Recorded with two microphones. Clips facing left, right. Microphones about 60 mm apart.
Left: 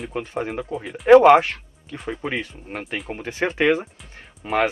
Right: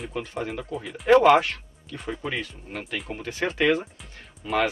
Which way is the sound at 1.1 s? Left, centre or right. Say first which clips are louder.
Left 5 dB; left.